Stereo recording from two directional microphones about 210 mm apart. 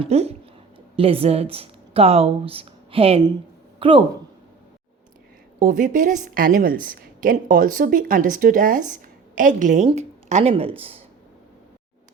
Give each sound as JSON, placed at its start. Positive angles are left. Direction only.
{"t": 0.0, "sound": "speech", "side_deg": -30}
{"t": 5.5, "sound": "a woman's voice", "side_deg": -40}